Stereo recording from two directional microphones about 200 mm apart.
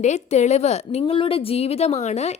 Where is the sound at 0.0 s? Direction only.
35° left (ahead or behind).